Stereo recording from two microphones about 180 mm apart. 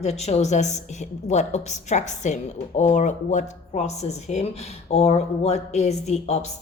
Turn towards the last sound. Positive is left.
turn(degrees=40)  # may be behind; listen again after turning